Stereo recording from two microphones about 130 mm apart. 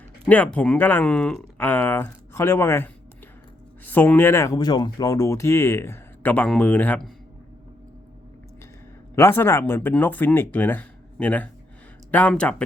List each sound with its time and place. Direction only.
0.3 s speech: 10° left (ahead or behind)
9.1 s speech: 20° left (ahead or behind)